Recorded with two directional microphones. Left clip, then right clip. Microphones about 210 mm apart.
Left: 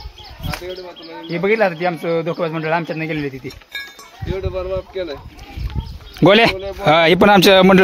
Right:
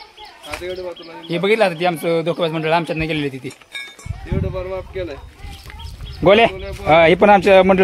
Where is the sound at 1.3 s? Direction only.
10° right (ahead or behind).